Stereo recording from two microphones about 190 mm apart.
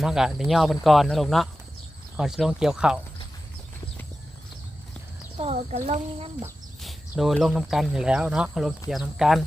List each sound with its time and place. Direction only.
0.0 s speech: 5° right (ahead or behind)
5.4 s speech: 30° right (ahead or behind)
6.8 s speech: centre (ahead or behind)